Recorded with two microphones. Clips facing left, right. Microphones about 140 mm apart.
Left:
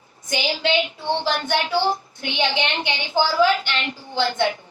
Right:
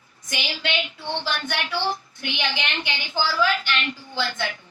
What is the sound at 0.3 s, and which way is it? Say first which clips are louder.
Speech: left 7 dB; 30° left (ahead or behind).